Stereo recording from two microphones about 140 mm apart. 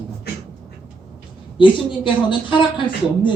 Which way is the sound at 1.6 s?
35° left (ahead or behind).